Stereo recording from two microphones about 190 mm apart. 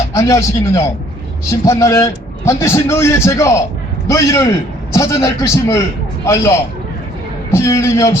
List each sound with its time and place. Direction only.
0.1 s a man's voice: 15° left (ahead or behind)